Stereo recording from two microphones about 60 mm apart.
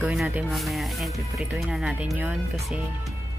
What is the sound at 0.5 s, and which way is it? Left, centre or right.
Speech, centre.